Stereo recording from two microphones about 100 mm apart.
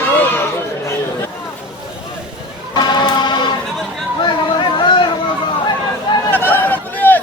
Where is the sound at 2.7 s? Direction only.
45° left (ahead or behind).